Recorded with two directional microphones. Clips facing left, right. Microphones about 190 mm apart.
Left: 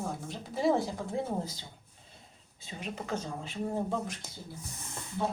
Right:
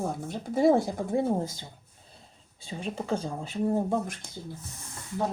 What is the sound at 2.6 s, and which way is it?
Speech, 30° right (ahead or behind).